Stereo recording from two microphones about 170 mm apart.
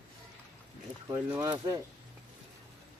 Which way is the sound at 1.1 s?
20° right (ahead or behind).